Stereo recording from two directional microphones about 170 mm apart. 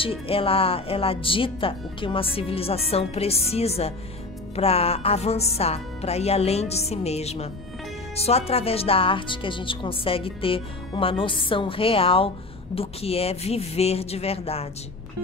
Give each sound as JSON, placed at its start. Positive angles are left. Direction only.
{"t": 0.0, "sound": "speech", "side_deg": 35}